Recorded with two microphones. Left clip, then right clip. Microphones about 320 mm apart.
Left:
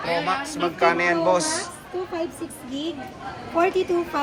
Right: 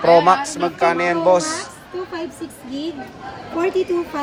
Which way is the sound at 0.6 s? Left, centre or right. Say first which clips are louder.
Right 3 dB; centre.